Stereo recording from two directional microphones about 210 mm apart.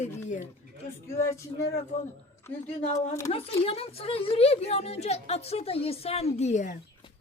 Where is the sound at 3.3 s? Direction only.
30° left (ahead or behind).